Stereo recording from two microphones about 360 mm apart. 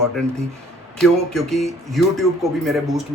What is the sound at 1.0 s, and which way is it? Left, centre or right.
Speech, centre.